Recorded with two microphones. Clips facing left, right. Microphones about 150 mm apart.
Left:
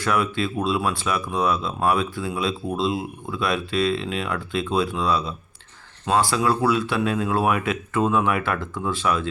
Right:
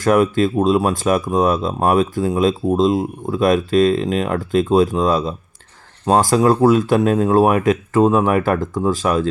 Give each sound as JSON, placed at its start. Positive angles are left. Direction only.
{"t": 0.0, "sound": "speech", "side_deg": -45}